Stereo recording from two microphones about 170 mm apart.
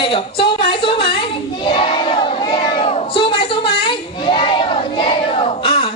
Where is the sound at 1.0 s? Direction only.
30° left (ahead or behind).